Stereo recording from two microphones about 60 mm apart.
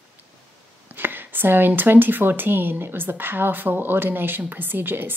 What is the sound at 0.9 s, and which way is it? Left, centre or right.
A woman's voice, right.